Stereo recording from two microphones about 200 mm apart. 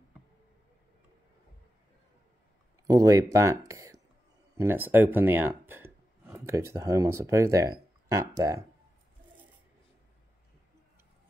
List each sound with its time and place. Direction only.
2.9 s speech: 15° right (ahead or behind)